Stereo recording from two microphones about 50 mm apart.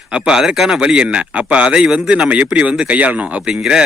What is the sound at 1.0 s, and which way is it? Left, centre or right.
Speech, right.